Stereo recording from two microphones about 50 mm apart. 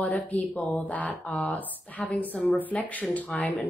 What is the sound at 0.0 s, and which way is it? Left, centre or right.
Speech, left.